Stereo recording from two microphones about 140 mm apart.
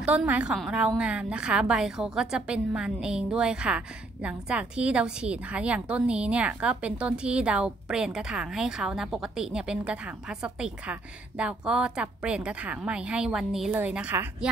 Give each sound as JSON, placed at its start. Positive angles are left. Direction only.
{"t": 0.0, "sound": "a woman's voice", "side_deg": -10}